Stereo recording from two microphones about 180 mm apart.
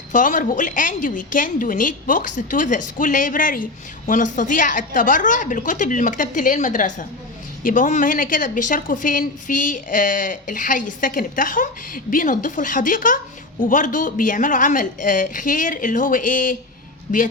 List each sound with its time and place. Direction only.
0.1 s speech: 45° left (ahead or behind)